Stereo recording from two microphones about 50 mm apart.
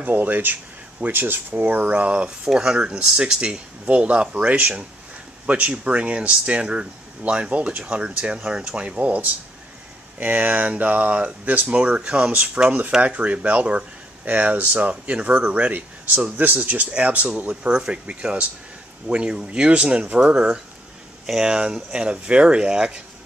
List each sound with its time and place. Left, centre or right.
0.0 s speech: right
1.9 s speech: right
2.2 s speech: centre
11.4 s speech: right
11.7 s speech: right